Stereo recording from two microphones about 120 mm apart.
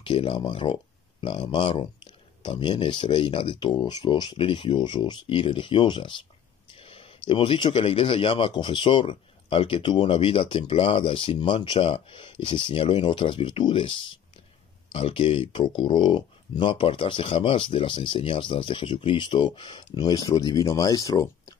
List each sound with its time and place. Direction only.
0.0 s speech: 45° left (ahead or behind)
6.7 s a sound: 50° left (ahead or behind)
7.2 s speech: 45° left (ahead or behind); by 21.5 s 30° left (ahead or behind)